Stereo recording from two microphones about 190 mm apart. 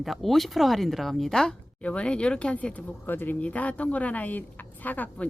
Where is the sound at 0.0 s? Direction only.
Centre (ahead or behind).